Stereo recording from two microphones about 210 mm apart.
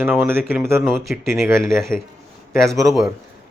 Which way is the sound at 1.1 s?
Centre (ahead or behind).